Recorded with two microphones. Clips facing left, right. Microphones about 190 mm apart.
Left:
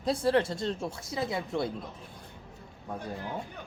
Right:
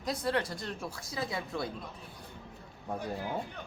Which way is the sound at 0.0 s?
30° left (ahead or behind).